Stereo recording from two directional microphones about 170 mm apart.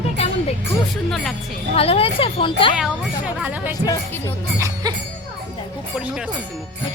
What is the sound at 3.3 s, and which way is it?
Speech, 10° right (ahead or behind).